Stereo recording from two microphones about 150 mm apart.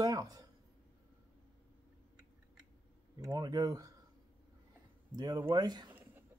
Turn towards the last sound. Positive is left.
turn(degrees=-15)  # may be behind; listen again after turning